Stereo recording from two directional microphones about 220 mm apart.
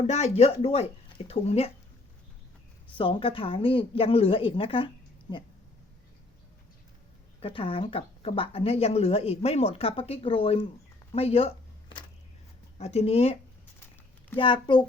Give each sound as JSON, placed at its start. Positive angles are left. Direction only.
{"t": 0.1, "sound": "speech", "side_deg": 30}
{"t": 2.9, "sound": "speech", "side_deg": 25}
{"t": 7.3, "sound": "speech", "side_deg": 25}
{"t": 12.8, "sound": "speech", "side_deg": 30}
{"t": 14.3, "sound": "speech", "side_deg": 20}